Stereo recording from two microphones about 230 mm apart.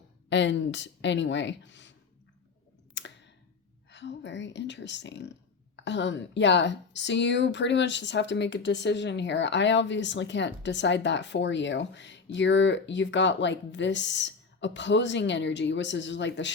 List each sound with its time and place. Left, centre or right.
0.3 s a woman's voice: left
2.9 s clicking: left
3.8 s a woman's voice: left